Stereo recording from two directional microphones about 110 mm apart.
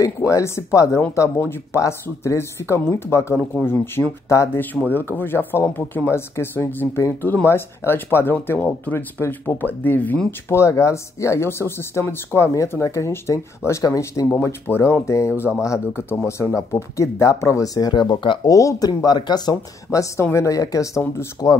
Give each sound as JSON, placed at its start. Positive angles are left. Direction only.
{"t": 0.0, "sound": "speech", "side_deg": 30}
{"t": 18.5, "sound": "speech", "side_deg": 30}